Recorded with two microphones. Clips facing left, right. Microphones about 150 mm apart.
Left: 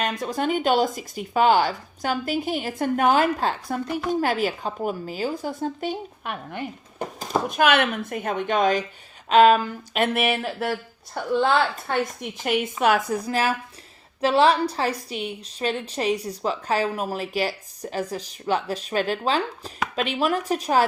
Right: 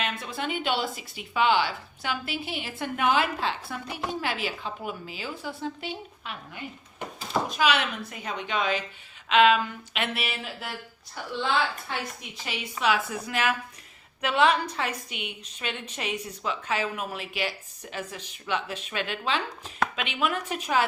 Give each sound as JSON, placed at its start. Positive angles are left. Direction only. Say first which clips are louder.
{"t": 0.0, "sound": "speech", "louder": "left 7 dB", "side_deg": 40}
{"t": 13.2, "sound": "a woman's voice", "louder": "left 4 dB", "side_deg": 35}